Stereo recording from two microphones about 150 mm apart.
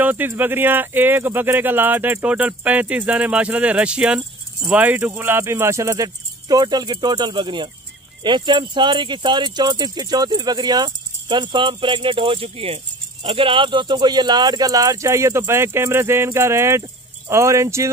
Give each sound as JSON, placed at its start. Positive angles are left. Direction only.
{"t": 0.0, "sound": "speech", "side_deg": -10}